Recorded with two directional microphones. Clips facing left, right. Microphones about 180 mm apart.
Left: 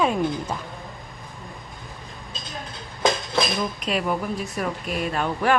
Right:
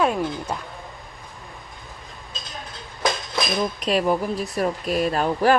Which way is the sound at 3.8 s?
35° right (ahead or behind).